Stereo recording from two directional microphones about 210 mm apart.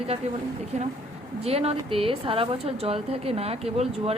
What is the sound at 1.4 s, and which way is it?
A woman's voice, 30° right (ahead or behind).